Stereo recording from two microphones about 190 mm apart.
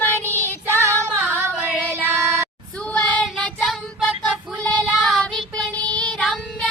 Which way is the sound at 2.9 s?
5° left (ahead or behind).